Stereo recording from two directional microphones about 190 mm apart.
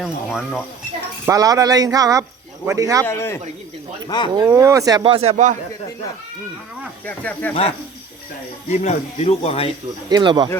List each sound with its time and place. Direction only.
0.0 s speech: centre (ahead or behind)
1.3 s speech: 20° right (ahead or behind)
3.1 s speech: 10° left (ahead or behind)
4.4 s speech: 15° right (ahead or behind)
5.1 s a man's voice: 35° right (ahead or behind)
7.0 s speech: 10° left (ahead or behind)
8.7 s speech: 35° left (ahead or behind)
10.1 s speech: 20° right (ahead or behind)